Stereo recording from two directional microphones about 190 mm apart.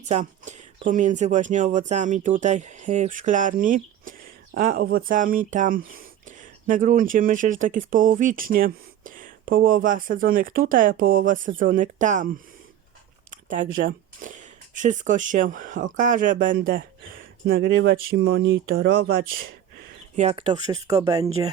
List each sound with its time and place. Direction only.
0.1 s speech: 40° right (ahead or behind)
13.3 s a sound: 40° right (ahead or behind)
13.7 s speech: 45° right (ahead or behind)
17.5 s speech: 65° right (ahead or behind)
18.2 s speech: 75° right (ahead or behind); by 18.8 s 90° right
20.1 s speech: 30° right (ahead or behind)